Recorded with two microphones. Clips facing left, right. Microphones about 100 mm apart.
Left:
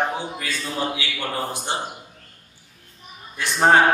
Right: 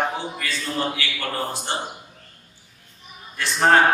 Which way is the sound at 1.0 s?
15° left (ahead or behind).